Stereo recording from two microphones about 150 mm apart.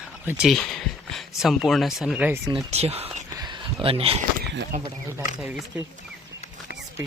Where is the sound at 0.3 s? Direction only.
5° right (ahead or behind).